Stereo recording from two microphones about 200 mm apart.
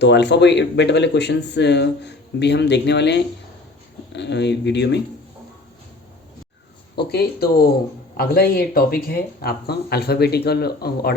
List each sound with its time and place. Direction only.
0.0 s speech: 60° left (ahead or behind)
6.9 s speech: 50° left (ahead or behind)